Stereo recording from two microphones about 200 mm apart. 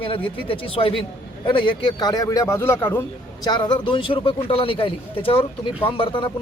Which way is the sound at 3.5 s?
20° left (ahead or behind).